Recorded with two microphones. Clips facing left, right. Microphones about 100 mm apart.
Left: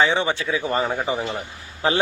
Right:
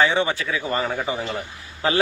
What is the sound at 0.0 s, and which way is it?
Speech, 20° left (ahead or behind).